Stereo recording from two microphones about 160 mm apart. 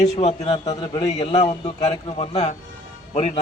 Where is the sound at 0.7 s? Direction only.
25° left (ahead or behind).